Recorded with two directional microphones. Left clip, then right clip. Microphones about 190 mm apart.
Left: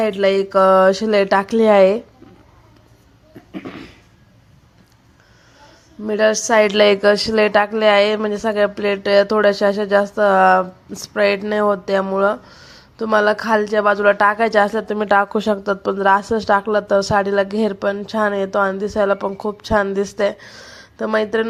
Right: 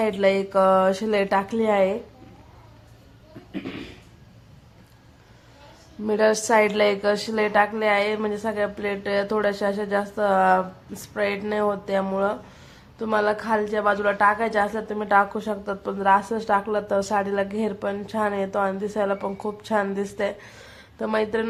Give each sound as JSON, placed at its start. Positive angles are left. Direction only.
{"t": 0.0, "sound": "a woman's voice", "side_deg": 20}
{"t": 6.1, "sound": "a woman's voice", "side_deg": 15}